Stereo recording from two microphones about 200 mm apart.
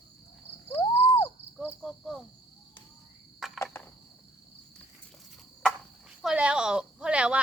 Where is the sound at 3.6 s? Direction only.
10° left (ahead or behind).